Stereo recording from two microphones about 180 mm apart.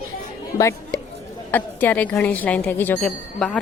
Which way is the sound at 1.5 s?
10° left (ahead or behind).